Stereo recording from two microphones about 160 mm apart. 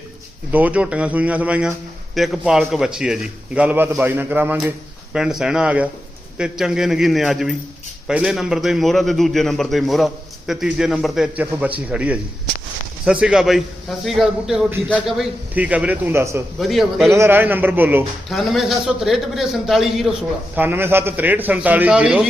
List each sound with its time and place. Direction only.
0.5 s a man's voice: 10° right (ahead or behind)
16.6 s a man's voice: centre (ahead or behind)
17.1 s a man's voice: 15° right (ahead or behind)
18.3 s a man's voice: centre (ahead or behind)
20.6 s a man's voice: 15° right (ahead or behind)